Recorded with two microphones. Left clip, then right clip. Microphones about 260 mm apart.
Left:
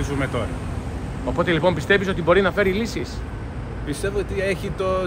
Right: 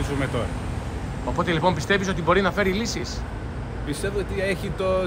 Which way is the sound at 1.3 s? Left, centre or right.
Right.